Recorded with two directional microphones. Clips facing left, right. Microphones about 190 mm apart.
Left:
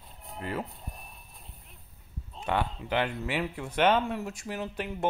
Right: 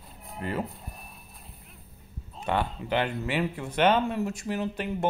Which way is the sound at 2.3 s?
Centre (ahead or behind).